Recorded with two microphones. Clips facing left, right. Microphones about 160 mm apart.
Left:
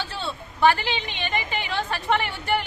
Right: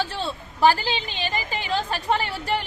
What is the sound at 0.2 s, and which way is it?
A woman's voice, 35° right (ahead or behind).